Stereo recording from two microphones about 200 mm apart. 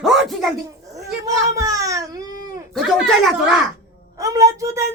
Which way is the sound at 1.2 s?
15° right (ahead or behind).